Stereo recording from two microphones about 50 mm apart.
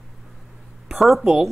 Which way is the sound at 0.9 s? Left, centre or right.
Centre.